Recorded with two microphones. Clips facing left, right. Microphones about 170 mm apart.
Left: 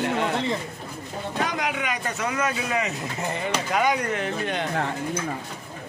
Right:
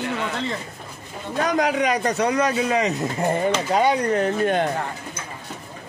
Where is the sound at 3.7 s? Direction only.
30° right (ahead or behind).